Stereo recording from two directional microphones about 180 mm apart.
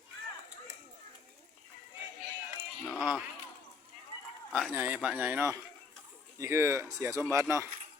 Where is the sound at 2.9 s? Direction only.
Centre (ahead or behind).